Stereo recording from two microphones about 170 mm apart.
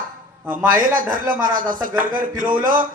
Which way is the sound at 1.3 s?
55° right (ahead or behind).